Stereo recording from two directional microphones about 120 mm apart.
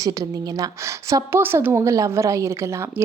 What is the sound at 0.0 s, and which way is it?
Speech, 30° right (ahead or behind).